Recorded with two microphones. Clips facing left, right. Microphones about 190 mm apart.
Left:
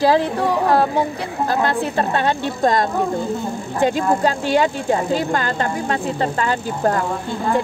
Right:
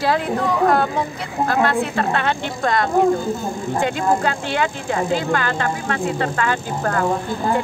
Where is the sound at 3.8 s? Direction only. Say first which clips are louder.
Left 3 dB; 35° left (ahead or behind).